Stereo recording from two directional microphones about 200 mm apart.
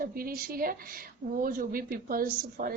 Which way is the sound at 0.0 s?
45° right (ahead or behind).